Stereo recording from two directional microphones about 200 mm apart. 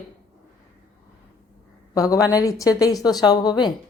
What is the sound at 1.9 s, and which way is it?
A woman's voice, 15° left (ahead or behind).